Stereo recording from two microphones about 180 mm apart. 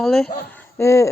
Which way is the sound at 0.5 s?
15° left (ahead or behind).